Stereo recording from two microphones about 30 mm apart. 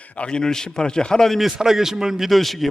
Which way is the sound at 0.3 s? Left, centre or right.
Left.